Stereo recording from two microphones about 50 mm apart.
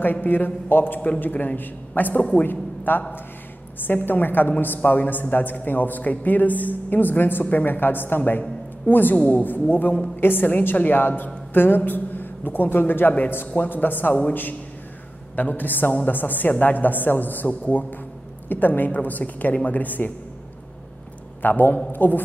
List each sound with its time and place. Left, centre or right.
0.0 s a woman's voice: left
15.3 s a woman's voice: left
21.4 s a man's voice: left